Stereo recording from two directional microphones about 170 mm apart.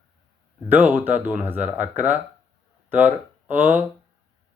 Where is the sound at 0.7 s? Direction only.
10° right (ahead or behind).